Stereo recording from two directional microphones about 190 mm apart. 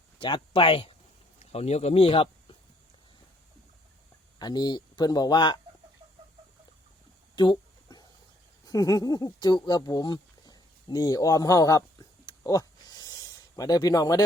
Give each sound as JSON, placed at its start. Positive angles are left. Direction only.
{"t": 0.2, "sound": "speech", "side_deg": 25}
{"t": 4.4, "sound": "speech", "side_deg": 20}
{"t": 7.3, "sound": "a sound", "side_deg": 20}
{"t": 8.6, "sound": "speech", "side_deg": 20}